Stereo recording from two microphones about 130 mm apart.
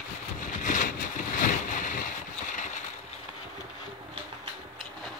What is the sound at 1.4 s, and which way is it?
Boat, 85° left.